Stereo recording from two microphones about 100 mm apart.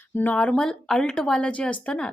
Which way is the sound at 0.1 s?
20° left (ahead or behind).